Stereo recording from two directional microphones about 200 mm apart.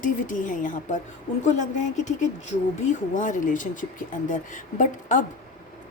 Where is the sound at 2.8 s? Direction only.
40° left (ahead or behind).